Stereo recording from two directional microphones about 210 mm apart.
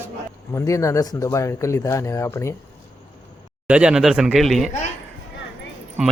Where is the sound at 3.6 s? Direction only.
5° right (ahead or behind).